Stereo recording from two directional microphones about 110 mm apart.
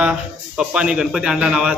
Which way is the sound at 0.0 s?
10° right (ahead or behind).